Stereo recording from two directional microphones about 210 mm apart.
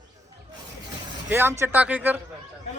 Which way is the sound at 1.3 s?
10° right (ahead or behind).